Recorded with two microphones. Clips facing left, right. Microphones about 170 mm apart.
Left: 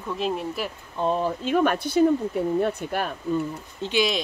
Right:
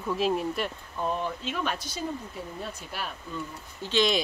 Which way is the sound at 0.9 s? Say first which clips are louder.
Left 6 dB; 35° left (ahead or behind).